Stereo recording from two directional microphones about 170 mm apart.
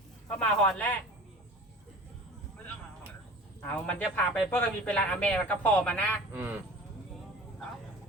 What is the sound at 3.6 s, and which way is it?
Speech, 10° left (ahead or behind).